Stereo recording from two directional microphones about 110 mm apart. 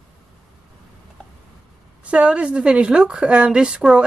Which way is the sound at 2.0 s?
10° right (ahead or behind).